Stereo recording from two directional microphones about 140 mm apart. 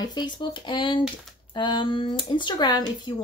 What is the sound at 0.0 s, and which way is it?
Speech, 30° left (ahead or behind).